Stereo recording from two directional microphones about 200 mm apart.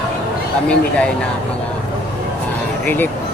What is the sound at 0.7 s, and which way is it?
Speech, 5° left (ahead or behind).